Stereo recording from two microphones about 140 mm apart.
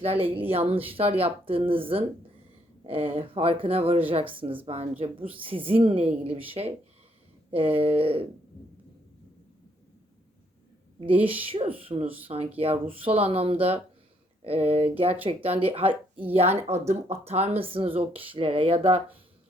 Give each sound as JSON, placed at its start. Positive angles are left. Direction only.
{"t": 0.0, "sound": "a woman's voice", "side_deg": -45}
{"t": 11.4, "sound": "a woman's voice", "side_deg": -40}
{"t": 12.0, "sound": "speech", "side_deg": -10}
{"t": 12.5, "sound": "speech", "side_deg": -45}
{"t": 15.9, "sound": "speech", "side_deg": -10}
{"t": 16.3, "sound": "speech", "side_deg": -45}